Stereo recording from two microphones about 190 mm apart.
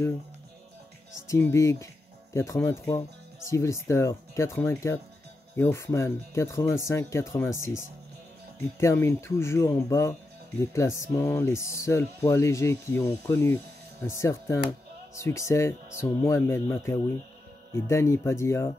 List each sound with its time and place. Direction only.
1.2 s speech: 15° left (ahead or behind)
8.7 s speech: 15° left (ahead or behind)